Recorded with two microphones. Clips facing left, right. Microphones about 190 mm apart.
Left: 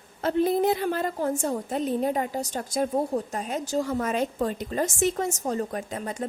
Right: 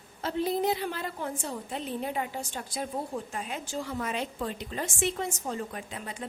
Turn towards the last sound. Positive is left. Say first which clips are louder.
# left 7 dB
turn(degrees=45)  # may be behind; listen again after turning